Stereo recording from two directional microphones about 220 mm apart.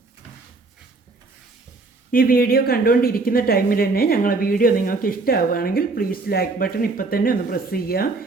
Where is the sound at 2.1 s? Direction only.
40° left (ahead or behind).